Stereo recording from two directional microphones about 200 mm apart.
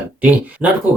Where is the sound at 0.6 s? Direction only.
10° right (ahead or behind).